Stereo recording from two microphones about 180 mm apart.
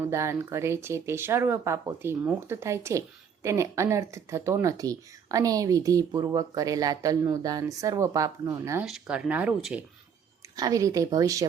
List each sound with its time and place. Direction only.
0.0 s speech: 15° right (ahead or behind)
8.8 s speech: 5° right (ahead or behind)
10.5 s speech: 20° right (ahead or behind)